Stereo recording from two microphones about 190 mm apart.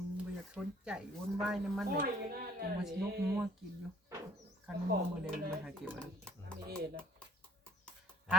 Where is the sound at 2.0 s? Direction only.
50° right (ahead or behind).